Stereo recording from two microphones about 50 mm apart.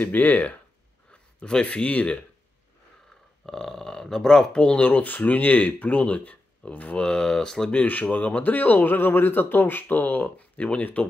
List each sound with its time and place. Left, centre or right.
0.0 s speech: left
1.4 s speech: left
3.4 s speech: centre
4.6 s speech: left
7.0 s speech: centre
7.7 s speech: left